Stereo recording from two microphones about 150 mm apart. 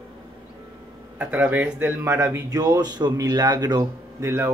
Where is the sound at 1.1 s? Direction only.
10° right (ahead or behind).